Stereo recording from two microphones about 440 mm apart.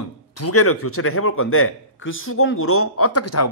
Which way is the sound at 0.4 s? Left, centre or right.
Left.